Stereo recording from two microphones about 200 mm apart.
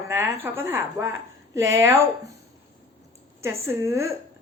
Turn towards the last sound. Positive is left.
turn(degrees=-15)  # may be behind; listen again after turning